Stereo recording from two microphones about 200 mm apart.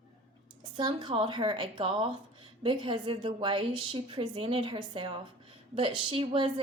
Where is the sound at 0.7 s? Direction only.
25° right (ahead or behind).